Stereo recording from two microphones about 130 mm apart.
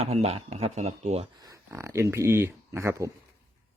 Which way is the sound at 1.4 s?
25° right (ahead or behind).